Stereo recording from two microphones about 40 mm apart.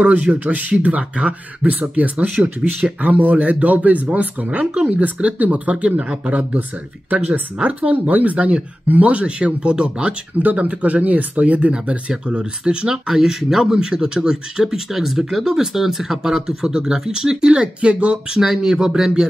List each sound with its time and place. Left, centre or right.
0.0 s speech: right
10.3 s speech: right
12.8 s speech: centre; by 18.2 s right
18.3 s speech: centre